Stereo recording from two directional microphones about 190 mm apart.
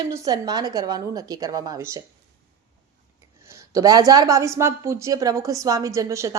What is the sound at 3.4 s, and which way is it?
Speech, 15° right (ahead or behind).